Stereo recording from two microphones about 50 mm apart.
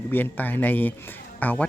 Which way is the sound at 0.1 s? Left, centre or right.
Left.